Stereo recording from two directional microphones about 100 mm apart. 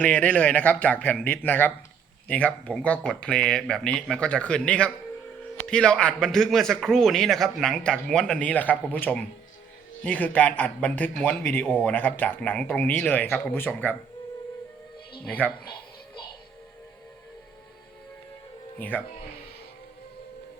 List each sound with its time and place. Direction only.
0.0 s a man's voice: 15° left (ahead or behind)
15.2 s a man's voice: 15° left (ahead or behind)
18.8 s a man's voice: 15° left (ahead or behind)